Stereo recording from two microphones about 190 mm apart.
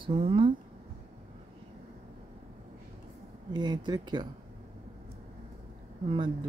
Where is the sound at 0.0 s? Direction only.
30° right (ahead or behind).